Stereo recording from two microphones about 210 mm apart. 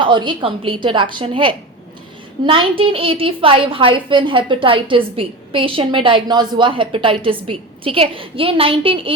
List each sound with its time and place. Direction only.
0.0 s a woman's voice: 20° right (ahead or behind)